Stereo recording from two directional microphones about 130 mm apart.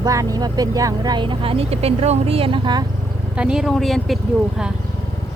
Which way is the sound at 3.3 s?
5° right (ahead or behind).